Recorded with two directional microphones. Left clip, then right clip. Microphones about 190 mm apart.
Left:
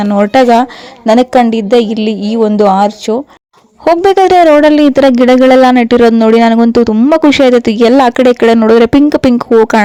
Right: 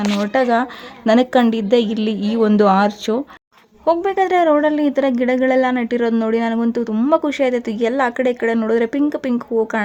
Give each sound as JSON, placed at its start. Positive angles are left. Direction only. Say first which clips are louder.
{"t": 0.2, "sound": "a woman's voice", "louder": "left 11 dB", "side_deg": 40}
{"t": 4.0, "sound": "speech", "louder": "left 12 dB", "side_deg": 45}